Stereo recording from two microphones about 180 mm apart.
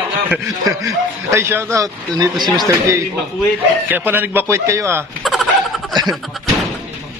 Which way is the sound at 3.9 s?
10° right (ahead or behind).